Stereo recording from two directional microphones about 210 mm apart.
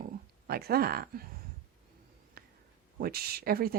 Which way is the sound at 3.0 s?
45° right (ahead or behind).